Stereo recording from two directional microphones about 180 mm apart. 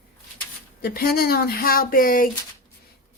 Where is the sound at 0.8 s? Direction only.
60° left (ahead or behind).